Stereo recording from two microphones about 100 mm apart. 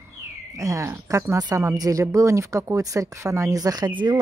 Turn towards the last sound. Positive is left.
turn(degrees=-50)  # may be behind; listen again after turning